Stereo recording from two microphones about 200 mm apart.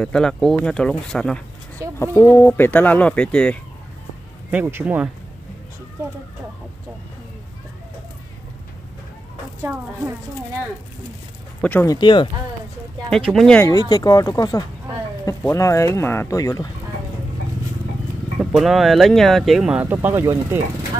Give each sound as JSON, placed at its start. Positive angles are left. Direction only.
{"t": 0.0, "sound": "speech", "side_deg": 5}
{"t": 1.8, "sound": "a sound", "side_deg": -15}
{"t": 2.3, "sound": "speech", "side_deg": 10}
{"t": 4.5, "sound": "speech", "side_deg": -10}
{"t": 11.6, "sound": "speech", "side_deg": 10}
{"t": 13.3, "sound": "speech", "side_deg": 5}
{"t": 13.7, "sound": "speech", "side_deg": 20}
{"t": 18.4, "sound": "speech", "side_deg": 0}